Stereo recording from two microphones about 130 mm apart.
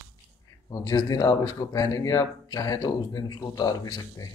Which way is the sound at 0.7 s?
30° left (ahead or behind).